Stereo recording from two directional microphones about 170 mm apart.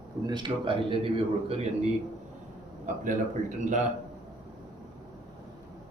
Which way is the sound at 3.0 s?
50° right (ahead or behind).